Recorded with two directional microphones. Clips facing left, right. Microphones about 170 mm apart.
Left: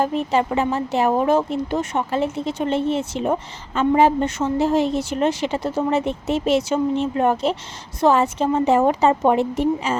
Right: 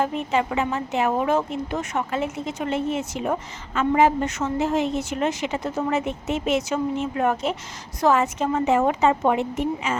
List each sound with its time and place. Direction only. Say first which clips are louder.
0.0 s a woman's voice: left 3 dB; 35° left (ahead or behind)